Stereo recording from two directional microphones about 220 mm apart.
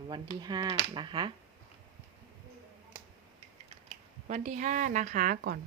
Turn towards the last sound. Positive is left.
turn(degrees=-40)  # may be behind; listen again after turning